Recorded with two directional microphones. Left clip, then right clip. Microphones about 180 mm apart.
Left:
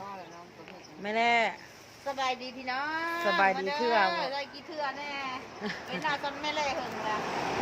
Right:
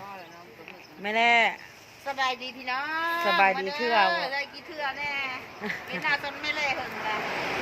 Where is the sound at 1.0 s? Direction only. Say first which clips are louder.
Right 5 dB; 20° right (ahead or behind).